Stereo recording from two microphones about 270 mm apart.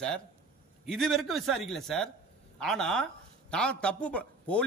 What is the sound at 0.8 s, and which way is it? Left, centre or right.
A man's voice, centre.